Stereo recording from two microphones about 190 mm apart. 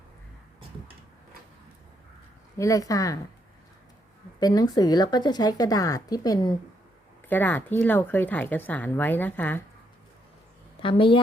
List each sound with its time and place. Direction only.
2.6 s speech: 15° left (ahead or behind)
4.4 s a woman's voice: 20° left (ahead or behind)
10.8 s a woman's voice: 30° left (ahead or behind)